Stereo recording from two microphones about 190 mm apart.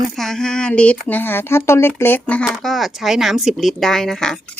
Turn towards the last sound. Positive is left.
turn(degrees=0)  # may be behind; listen again after turning